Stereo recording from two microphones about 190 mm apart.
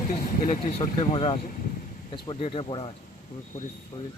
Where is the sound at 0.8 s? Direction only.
30° left (ahead or behind).